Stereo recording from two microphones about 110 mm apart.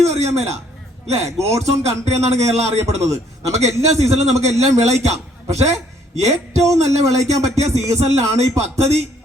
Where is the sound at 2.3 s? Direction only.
80° right.